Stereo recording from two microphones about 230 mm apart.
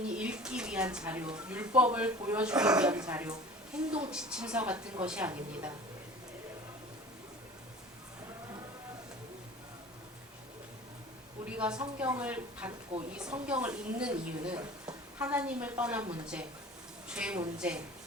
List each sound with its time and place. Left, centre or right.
0.1 s a woman's voice: centre
11.4 s a woman's voice: centre